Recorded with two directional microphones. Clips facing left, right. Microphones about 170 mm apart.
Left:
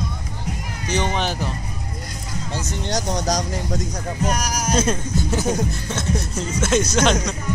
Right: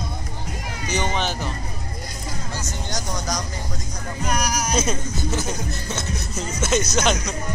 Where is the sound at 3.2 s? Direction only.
40° left (ahead or behind).